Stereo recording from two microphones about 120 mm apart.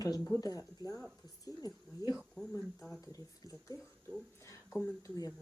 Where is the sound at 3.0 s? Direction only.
30° left (ahead or behind).